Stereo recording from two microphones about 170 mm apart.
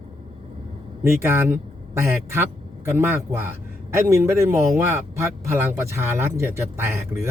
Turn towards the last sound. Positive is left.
turn(degrees=-15)  # may be behind; listen again after turning